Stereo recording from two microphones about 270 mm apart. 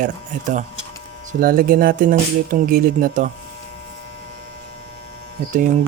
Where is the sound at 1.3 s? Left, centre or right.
Right.